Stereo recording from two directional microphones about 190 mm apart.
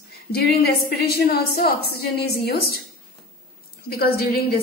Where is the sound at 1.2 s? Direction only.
55° left (ahead or behind).